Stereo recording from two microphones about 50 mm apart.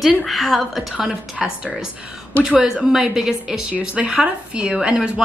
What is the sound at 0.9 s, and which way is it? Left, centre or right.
Speech, centre.